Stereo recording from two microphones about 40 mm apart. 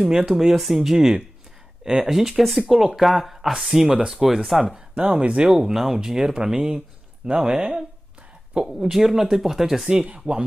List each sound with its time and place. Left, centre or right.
0.0 s speech: centre
0.9 s speech: centre
4.7 s speech: right
5.5 s speech: centre
8.6 s speech: centre
10.0 s speech: right